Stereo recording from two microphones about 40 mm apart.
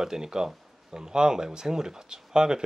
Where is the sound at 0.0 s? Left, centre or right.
Centre.